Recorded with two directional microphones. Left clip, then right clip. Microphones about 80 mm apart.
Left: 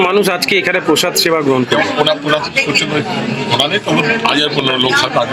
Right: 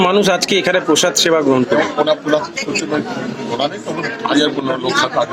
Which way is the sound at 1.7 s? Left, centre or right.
Right.